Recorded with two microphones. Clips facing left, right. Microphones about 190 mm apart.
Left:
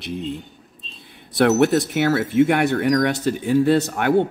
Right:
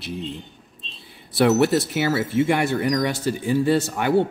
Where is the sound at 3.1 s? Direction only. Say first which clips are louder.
Left 3 dB; 65° left (ahead or behind).